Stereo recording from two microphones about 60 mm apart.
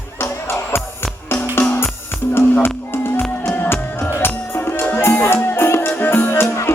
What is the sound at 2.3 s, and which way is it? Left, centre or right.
Music, left.